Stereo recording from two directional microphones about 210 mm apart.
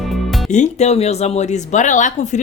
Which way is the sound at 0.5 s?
35° left (ahead or behind).